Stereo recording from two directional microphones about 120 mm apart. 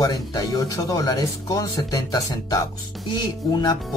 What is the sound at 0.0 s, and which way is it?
Speech, 30° left (ahead or behind).